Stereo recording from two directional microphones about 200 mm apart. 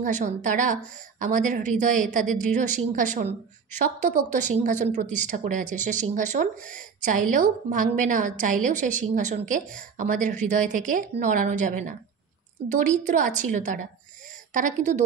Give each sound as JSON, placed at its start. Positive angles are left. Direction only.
{"t": 0.0, "sound": "a woman's voice", "side_deg": -40}